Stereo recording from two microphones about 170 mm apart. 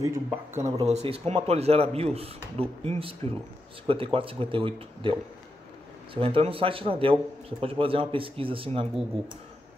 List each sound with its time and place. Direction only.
0.0 s speech: 15° right (ahead or behind)
0.8 s speech: 40° right (ahead or behind)
6.1 s speech: 35° right (ahead or behind)